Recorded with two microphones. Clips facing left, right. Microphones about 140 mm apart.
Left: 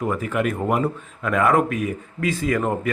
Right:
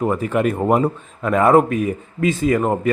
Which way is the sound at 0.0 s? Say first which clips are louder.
Right 4 dB; 30° right (ahead or behind).